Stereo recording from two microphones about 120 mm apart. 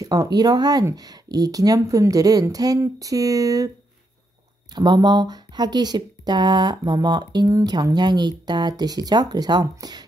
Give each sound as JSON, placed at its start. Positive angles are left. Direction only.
{"t": 0.0, "sound": "speech", "side_deg": -30}
{"t": 4.7, "sound": "speech", "side_deg": -35}